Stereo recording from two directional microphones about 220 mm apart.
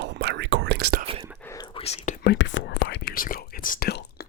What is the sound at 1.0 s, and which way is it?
Whispering, 25° right (ahead or behind).